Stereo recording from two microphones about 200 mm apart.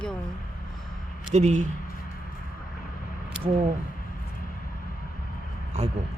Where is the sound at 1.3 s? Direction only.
35° right (ahead or behind).